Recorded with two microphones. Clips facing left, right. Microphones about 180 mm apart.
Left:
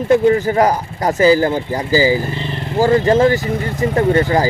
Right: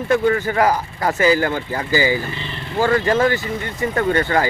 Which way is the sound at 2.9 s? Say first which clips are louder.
Left 5 dB; 25° left (ahead or behind).